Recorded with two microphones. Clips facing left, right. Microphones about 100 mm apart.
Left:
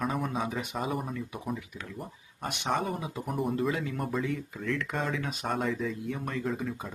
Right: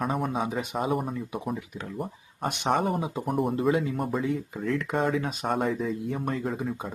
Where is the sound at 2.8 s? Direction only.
50° right (ahead or behind).